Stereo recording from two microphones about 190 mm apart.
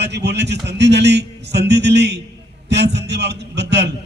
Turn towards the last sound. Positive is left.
turn(degrees=-65)  # may be behind; listen again after turning